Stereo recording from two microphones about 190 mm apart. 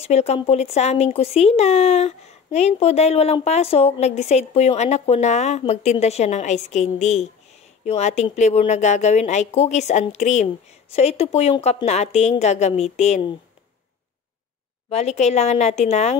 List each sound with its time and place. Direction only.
0.0 s speech: 35° left (ahead or behind)
14.9 s speech: 35° left (ahead or behind)